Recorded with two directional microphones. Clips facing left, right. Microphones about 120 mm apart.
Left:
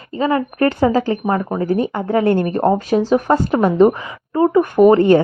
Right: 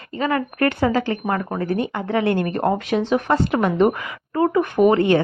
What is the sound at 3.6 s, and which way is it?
A woman's voice, 30° left (ahead or behind).